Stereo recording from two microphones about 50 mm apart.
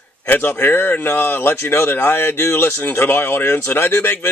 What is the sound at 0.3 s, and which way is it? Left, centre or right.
Speech, left.